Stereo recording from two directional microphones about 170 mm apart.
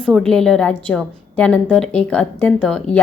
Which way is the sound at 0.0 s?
5° left (ahead or behind).